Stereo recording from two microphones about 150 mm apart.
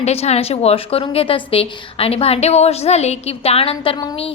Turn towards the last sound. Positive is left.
turn(degrees=40)  # may be behind; listen again after turning